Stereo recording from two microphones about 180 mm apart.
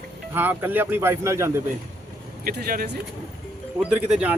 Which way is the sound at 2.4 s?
55° right (ahead or behind).